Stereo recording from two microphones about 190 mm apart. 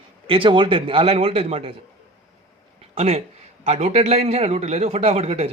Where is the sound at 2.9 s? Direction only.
35° right (ahead or behind).